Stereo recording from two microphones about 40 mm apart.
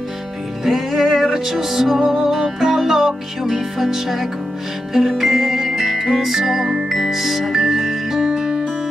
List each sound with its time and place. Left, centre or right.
0.7 s music: centre
8.3 s music: centre